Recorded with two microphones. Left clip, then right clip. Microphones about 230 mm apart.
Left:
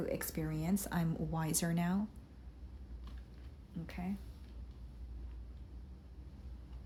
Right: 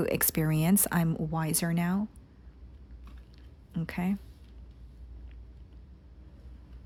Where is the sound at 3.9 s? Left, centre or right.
Right.